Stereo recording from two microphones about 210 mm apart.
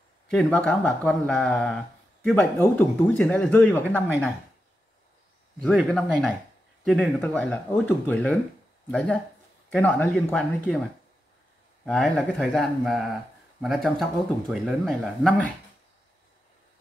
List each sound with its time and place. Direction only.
0.3 s speech: 5° left (ahead or behind)
5.6 s speech: 5° left (ahead or behind)
11.8 s speech: centre (ahead or behind)